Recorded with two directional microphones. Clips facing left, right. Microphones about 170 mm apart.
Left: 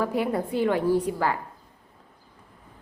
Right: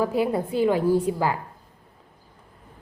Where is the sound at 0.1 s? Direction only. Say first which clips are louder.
Right 2 dB; 25° right (ahead or behind).